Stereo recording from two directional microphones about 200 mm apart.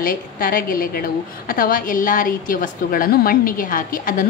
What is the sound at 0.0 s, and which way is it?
A woman's voice, 45° left (ahead or behind).